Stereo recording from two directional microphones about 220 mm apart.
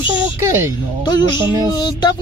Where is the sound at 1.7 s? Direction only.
20° left (ahead or behind).